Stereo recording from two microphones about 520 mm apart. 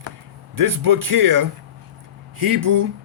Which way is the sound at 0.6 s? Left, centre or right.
Right.